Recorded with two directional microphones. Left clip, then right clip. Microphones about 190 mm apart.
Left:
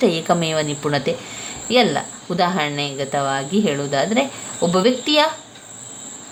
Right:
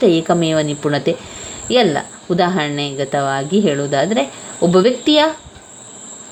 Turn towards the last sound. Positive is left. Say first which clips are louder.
# right 4 dB
turn(degrees=-20)  # may be behind; listen again after turning